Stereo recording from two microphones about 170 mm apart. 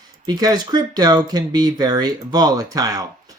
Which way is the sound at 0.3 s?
25° right (ahead or behind).